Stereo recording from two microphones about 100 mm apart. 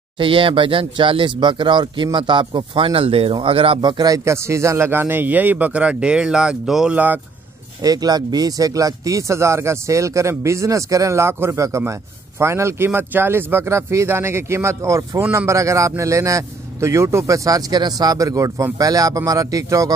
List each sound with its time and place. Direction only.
0.2 s speech: 60° right (ahead or behind); by 7.0 s 5° right (ahead or behind)
7.8 s a man's voice: 40° right (ahead or behind)